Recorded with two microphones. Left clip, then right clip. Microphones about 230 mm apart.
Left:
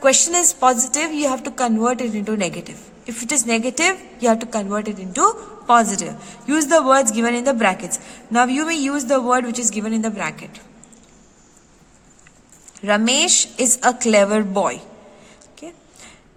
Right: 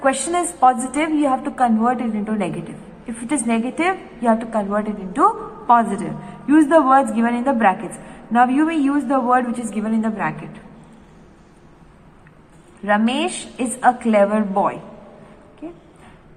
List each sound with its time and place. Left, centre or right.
0.0 s a woman's voice: left
6.5 s a woman's voice: left
12.8 s a woman's voice: left
15.6 s a woman's voice: left